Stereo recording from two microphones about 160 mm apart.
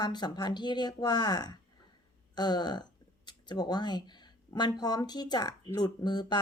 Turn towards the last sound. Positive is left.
turn(degrees=25)  # may be behind; listen again after turning